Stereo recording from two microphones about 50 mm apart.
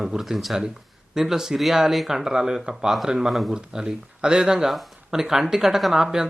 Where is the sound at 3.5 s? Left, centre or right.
Centre.